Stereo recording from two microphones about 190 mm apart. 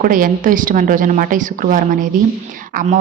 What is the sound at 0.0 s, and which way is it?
A woman's voice, 45° right (ahead or behind).